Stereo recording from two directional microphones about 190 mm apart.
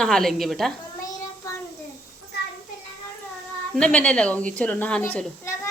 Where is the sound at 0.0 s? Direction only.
Centre (ahead or behind).